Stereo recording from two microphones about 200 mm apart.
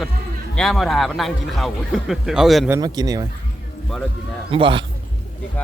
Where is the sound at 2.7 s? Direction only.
20° right (ahead or behind).